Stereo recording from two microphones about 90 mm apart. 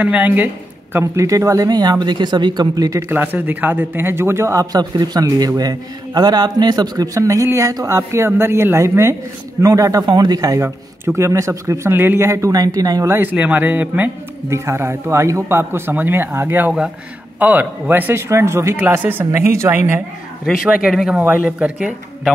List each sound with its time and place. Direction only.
0.0 s speech: 20° right (ahead or behind)
0.9 s speech: 35° right (ahead or behind)
3.1 s speech: 20° right (ahead or behind)
4.7 s speech: 50° right (ahead or behind)
7.2 s speech: 40° right (ahead or behind)
11.1 s speech: 35° right (ahead or behind)
13.1 s speech: 20° right (ahead or behind)
14.5 s speech: 30° right (ahead or behind)
20.4 s speech: 5° right (ahead or behind)